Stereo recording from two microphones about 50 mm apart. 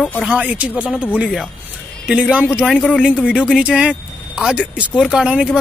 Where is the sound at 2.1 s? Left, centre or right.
Centre.